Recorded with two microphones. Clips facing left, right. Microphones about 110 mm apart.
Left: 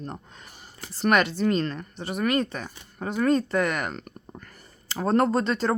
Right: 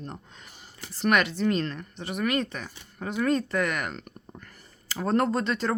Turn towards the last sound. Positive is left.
turn(degrees=35)  # may be behind; listen again after turning